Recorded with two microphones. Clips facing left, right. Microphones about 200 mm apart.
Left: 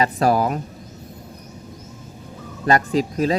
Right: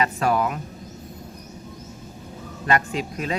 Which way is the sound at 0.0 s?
35° left (ahead or behind).